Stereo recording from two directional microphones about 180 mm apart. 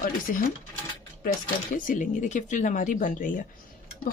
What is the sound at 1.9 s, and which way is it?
A woman's voice, 45° left (ahead or behind).